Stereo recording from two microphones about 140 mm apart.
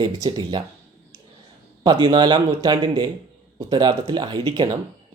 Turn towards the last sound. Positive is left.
turn(degrees=-35)  # may be behind; listen again after turning